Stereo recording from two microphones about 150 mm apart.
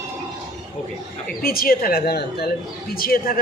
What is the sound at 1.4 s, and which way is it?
A woman's voice, 80° left.